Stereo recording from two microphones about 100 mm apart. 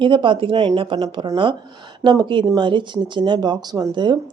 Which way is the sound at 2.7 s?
50° right (ahead or behind).